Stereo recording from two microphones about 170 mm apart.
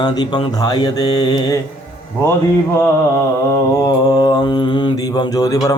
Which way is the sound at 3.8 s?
20° left (ahead or behind).